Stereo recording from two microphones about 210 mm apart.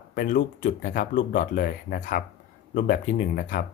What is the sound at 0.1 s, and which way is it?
Speech, 40° left (ahead or behind).